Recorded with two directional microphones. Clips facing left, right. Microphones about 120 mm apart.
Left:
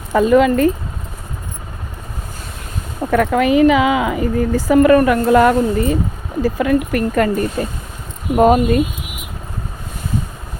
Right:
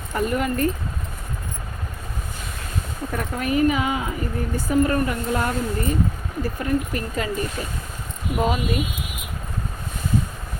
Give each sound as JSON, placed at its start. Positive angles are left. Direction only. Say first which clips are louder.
{"t": 0.2, "sound": "speech", "louder": "left 10 dB", "side_deg": 90}
{"t": 3.1, "sound": "speech", "louder": "left 12 dB", "side_deg": 90}
{"t": 8.4, "sound": "speech", "louder": "left 11 dB", "side_deg": 50}